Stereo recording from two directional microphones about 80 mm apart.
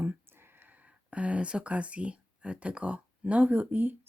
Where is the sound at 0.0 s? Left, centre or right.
Right.